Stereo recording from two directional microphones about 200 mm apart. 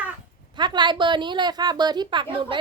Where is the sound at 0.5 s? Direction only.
20° right (ahead or behind).